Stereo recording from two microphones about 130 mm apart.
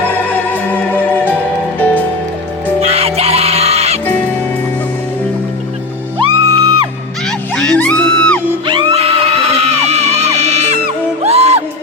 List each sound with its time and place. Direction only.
0.5 s music: 15° left (ahead or behind)
2.8 s music: 50° right (ahead or behind)
6.1 s music: 40° right (ahead or behind)
7.3 s music: 5° left (ahead or behind)
8.6 s music: 40° right (ahead or behind)
9.0 s music: 50° right (ahead or behind)